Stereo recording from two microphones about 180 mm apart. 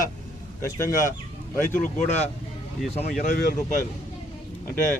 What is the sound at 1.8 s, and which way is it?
Speech, 45° left (ahead or behind).